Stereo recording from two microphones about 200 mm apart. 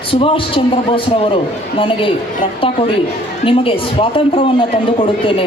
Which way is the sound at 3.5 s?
25° left (ahead or behind).